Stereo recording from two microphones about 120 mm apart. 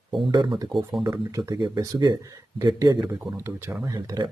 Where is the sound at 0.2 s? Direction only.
40° right (ahead or behind); by 3.5 s 25° right (ahead or behind).